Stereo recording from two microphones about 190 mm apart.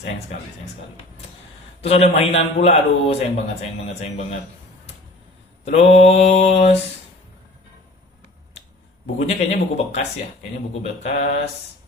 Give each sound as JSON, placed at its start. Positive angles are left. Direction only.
{"t": 1.8, "sound": "a man's voice", "side_deg": 35}
{"t": 5.7, "sound": "a man's voice", "side_deg": 35}
{"t": 9.0, "sound": "a man's voice", "side_deg": 35}